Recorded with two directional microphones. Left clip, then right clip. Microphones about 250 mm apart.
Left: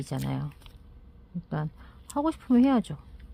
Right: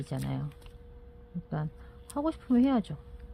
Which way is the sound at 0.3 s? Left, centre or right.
Left.